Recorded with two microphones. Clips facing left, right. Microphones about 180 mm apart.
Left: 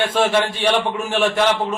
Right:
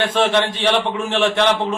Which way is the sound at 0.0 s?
10° left (ahead or behind).